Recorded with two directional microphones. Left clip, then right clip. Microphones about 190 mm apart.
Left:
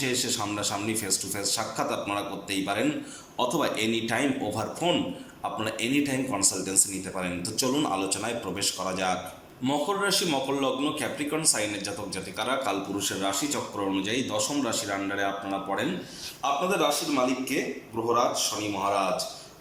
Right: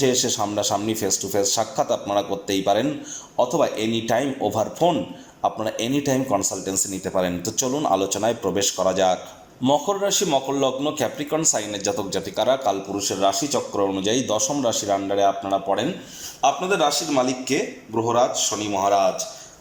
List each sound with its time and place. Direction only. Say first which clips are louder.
0.0 s a man's voice: right 8 dB; 25° right (ahead or behind)
16.4 s a man's voice: right 6 dB; 40° right (ahead or behind)